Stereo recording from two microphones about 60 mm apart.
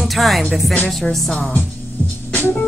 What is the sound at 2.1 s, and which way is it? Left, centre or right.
Music, left.